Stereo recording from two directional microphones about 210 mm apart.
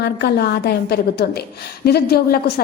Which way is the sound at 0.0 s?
50° left (ahead or behind).